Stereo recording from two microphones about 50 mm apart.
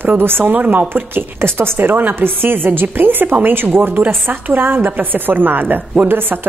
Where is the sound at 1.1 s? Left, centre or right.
Right.